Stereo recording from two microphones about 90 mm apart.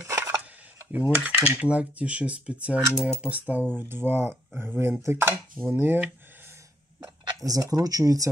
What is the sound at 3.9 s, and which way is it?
Speech, 25° right (ahead or behind).